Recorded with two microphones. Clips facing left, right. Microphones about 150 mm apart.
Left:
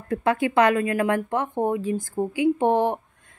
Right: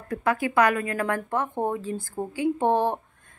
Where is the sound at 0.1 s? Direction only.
25° left (ahead or behind).